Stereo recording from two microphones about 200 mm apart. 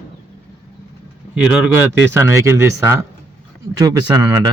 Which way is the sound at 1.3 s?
5° right (ahead or behind).